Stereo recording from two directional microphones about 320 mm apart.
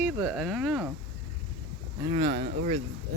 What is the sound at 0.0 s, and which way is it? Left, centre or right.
Speech, centre.